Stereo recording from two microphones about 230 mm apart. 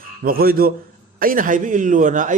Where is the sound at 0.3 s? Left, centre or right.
Right.